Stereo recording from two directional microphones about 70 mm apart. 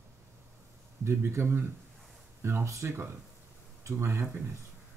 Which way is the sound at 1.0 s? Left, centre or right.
Right.